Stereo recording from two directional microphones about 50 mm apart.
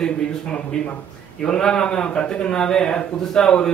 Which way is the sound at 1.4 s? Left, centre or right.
Centre.